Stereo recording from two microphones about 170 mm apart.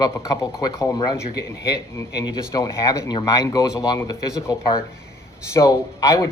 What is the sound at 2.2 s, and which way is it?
Speech, 20° left (ahead or behind).